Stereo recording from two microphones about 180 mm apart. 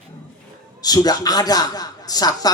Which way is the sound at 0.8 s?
20° left (ahead or behind).